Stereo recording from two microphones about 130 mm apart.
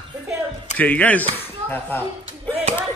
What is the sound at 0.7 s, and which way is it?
Speech, 10° left (ahead or behind).